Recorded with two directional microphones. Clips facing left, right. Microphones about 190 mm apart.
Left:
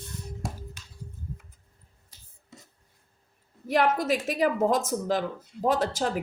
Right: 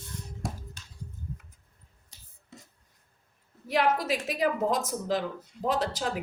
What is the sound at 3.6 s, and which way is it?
A woman's voice, 50° left (ahead or behind).